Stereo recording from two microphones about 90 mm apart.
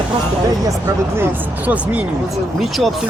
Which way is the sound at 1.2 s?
15° right (ahead or behind).